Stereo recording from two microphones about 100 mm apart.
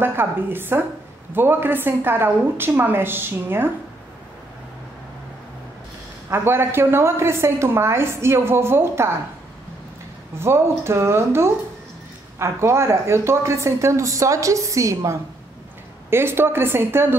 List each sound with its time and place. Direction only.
0.0 s a woman's voice: 20° right (ahead or behind)
6.3 s a woman's voice: 25° right (ahead or behind)
10.4 s a woman's voice: 25° right (ahead or behind)